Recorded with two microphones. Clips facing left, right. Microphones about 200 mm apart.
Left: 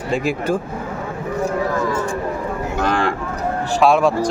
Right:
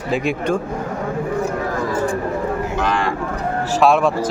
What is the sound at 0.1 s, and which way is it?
Speech, centre (ahead or behind).